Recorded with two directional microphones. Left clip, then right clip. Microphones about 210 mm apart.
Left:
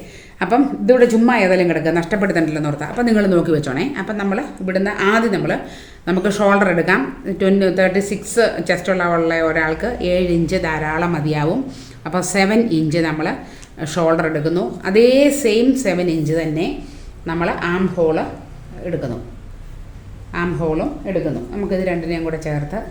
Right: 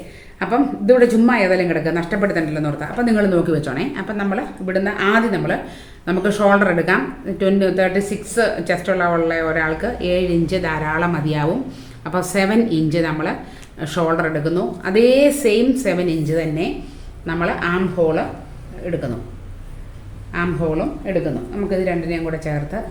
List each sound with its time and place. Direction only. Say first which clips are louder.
0.3 s speech: left 2 dB; 40° left (ahead or behind); by 19.0 s 20° left (ahead or behind)
20.3 s speech: left 1 dB; 20° left (ahead or behind)